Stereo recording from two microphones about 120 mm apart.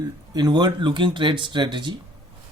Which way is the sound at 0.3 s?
35° right (ahead or behind).